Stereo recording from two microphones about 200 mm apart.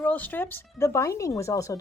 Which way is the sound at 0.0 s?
10° left (ahead or behind).